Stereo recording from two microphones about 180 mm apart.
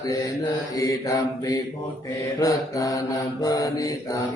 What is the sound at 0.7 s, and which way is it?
Mantra, 20° left (ahead or behind).